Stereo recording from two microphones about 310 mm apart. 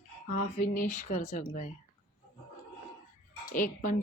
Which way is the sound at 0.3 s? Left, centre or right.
Left.